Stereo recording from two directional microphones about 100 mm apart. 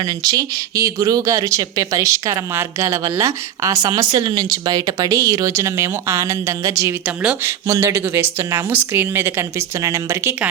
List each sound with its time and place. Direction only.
0.2 s speech: 40° right (ahead or behind)